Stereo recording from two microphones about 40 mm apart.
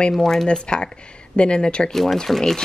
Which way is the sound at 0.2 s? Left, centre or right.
Centre.